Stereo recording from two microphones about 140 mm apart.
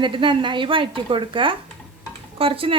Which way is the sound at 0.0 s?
35° right (ahead or behind).